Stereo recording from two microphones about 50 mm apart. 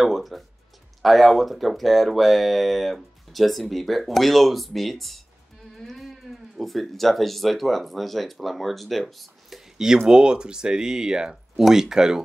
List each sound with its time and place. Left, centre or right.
0.0 s speech: centre